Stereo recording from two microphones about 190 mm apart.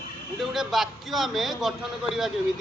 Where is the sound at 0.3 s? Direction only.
Centre (ahead or behind).